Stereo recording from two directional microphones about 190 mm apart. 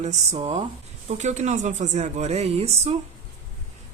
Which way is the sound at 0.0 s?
35° right (ahead or behind).